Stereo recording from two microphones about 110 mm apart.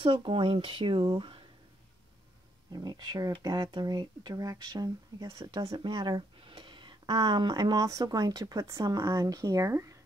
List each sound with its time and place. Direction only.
0.0 s speech: 55° right (ahead or behind)
2.7 s speech: 40° right (ahead or behind)
5.4 s speech: 50° right (ahead or behind); by 9.9 s 30° right (ahead or behind)